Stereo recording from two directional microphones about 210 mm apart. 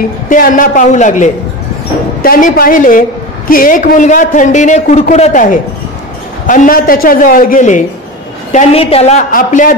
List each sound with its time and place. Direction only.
0.3 s a woman's voice: 40° left (ahead or behind)